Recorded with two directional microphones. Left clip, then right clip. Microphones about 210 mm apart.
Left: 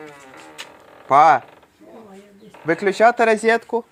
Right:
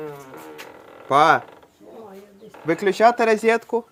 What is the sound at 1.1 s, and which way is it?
Speech, 5° left (ahead or behind).